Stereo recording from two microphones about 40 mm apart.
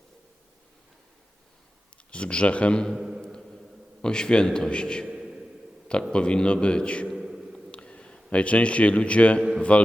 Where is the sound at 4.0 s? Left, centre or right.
Left.